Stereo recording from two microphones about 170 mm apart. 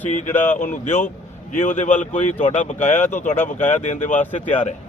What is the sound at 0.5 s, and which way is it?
Speech, 50° left (ahead or behind).